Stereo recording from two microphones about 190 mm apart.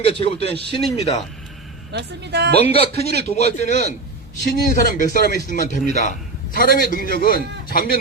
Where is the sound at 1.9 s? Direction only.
60° right (ahead or behind).